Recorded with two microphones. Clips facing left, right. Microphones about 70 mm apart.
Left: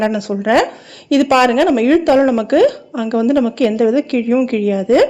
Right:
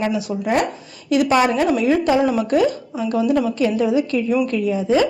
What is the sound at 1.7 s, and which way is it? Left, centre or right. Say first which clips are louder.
Speech: left 5 dB; left.